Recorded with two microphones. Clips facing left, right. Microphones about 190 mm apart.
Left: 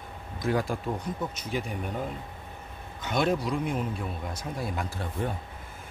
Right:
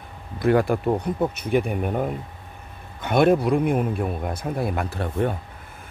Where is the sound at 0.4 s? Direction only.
65° right (ahead or behind).